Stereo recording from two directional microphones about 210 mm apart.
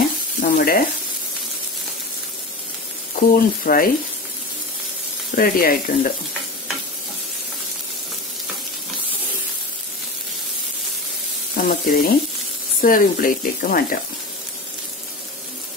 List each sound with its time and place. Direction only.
0.4 s stir: 45° left (ahead or behind)
3.2 s speech: 45° left (ahead or behind)
5.3 s speech: 45° left (ahead or behind)
11.5 s speech: 45° left (ahead or behind)